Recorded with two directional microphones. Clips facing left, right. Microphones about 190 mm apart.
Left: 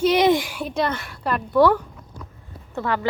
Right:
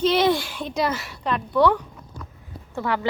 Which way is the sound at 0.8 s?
Centre (ahead or behind).